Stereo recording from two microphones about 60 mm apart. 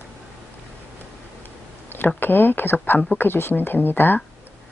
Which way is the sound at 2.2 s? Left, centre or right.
Left.